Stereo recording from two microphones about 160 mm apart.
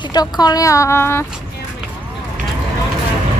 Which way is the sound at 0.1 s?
25° left (ahead or behind).